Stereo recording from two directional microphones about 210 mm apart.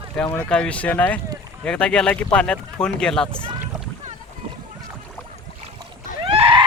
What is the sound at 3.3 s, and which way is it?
Speech, 25° right (ahead or behind).